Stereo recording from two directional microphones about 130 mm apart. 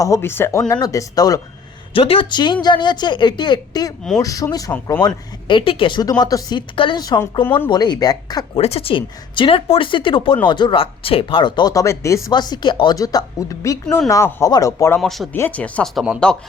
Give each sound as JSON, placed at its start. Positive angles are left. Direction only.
{"t": 0.0, "sound": "speech", "side_deg": 20}
{"t": 1.9, "sound": "speech", "side_deg": 45}
{"t": 5.5, "sound": "speech", "side_deg": 40}
{"t": 8.5, "sound": "speech", "side_deg": 50}
{"t": 12.3, "sound": "speech", "side_deg": 35}
{"t": 15.0, "sound": "speech", "side_deg": 0}
{"t": 15.3, "sound": "speech", "side_deg": 15}